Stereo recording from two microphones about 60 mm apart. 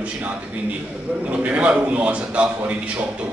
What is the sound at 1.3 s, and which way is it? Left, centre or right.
A man's voice, right.